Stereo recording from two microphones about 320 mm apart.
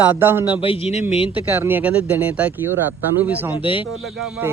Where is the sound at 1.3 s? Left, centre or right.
Centre.